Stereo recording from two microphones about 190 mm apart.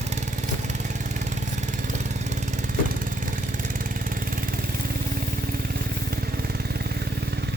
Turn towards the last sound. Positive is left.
turn(degrees=-60)  # may be behind; listen again after turning